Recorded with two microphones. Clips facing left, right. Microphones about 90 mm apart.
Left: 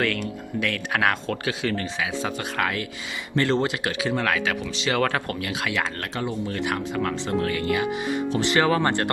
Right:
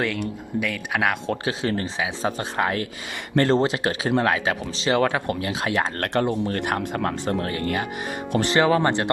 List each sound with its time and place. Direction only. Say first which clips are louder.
0.0 s speech: even; 15° right (ahead or behind)
1.5 s speech: right 1 dB; 30° right (ahead or behind)
5.5 s speech: right 2 dB; 35° right (ahead or behind)
6.1 s speech: right 6 dB; 50° right (ahead or behind)
8.5 s speech: right 2 dB; 15° right (ahead or behind)